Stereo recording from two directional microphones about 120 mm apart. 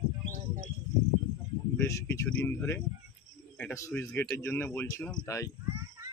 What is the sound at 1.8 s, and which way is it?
Speech, 20° left (ahead or behind).